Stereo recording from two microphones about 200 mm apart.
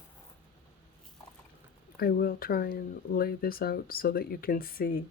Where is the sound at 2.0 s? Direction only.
45° left (ahead or behind).